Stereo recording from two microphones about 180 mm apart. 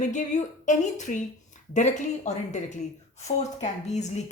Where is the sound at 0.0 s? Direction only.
40° left (ahead or behind).